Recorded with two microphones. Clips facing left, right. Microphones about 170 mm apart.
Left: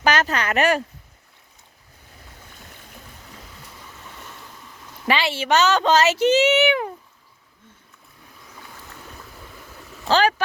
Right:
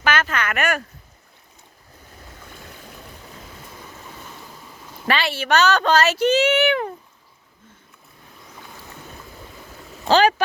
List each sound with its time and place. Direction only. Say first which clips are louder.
0.0 s speech: left 2 dB; 40° left (ahead or behind)
5.0 s speech: left 1 dB; 20° left (ahead or behind)
10.1 s speech: right 3 dB; 20° right (ahead or behind)